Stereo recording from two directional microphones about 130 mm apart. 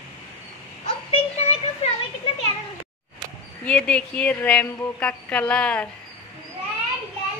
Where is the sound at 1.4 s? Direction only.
50° left (ahead or behind).